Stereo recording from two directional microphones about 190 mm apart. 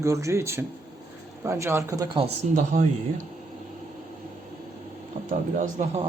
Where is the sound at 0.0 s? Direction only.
15° right (ahead or behind); by 2.8 s 35° right (ahead or behind).